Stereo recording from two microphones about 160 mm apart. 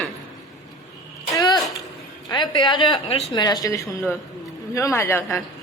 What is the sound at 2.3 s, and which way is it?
A woman's voice, 30° left (ahead or behind).